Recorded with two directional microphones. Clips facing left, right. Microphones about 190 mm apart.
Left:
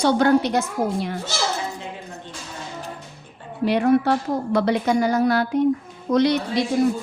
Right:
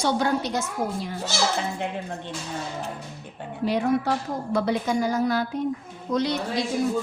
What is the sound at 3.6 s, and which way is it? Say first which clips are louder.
A woman's voice: left 5 dB; 70° left (ahead or behind).